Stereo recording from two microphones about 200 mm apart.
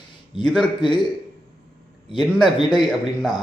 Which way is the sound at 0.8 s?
25° left (ahead or behind).